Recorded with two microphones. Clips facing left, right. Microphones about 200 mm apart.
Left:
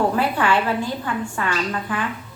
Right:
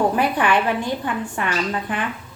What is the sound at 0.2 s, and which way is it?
A woman's voice, 15° right (ahead or behind).